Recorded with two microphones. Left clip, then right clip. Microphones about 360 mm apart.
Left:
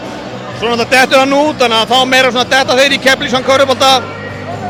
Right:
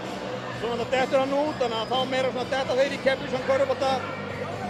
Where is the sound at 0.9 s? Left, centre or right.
Left.